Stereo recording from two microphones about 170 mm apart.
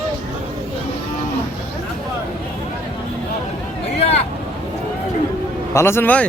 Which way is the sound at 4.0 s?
35° left (ahead or behind).